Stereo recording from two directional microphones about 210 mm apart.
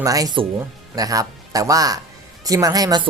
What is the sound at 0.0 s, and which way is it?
Speech, 15° right (ahead or behind).